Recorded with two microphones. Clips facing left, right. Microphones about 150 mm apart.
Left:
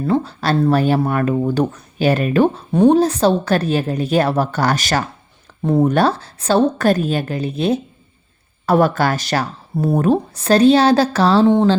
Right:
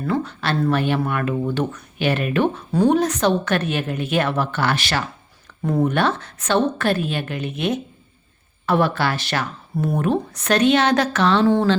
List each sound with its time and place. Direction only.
0.0 s speech: 30° left (ahead or behind)
5.6 s speech: 30° left (ahead or behind)
11.4 s speech: 20° left (ahead or behind)